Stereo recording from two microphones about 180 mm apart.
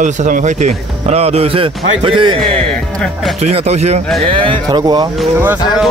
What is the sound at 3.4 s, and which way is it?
A man's voice, 35° right (ahead or behind).